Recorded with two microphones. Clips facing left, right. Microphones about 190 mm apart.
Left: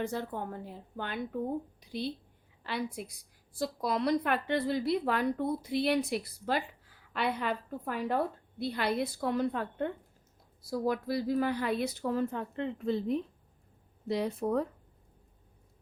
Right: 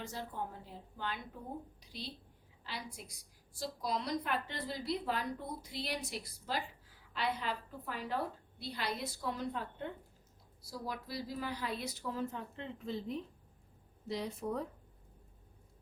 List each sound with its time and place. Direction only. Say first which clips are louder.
0.0 s a woman's voice: left 7 dB; 55° left (ahead or behind)